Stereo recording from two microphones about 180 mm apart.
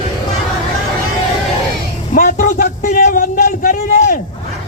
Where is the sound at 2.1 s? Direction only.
45° left (ahead or behind).